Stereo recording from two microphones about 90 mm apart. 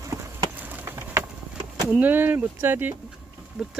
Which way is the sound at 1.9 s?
20° right (ahead or behind).